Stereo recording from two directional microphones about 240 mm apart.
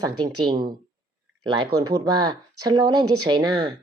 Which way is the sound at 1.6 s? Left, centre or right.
Right.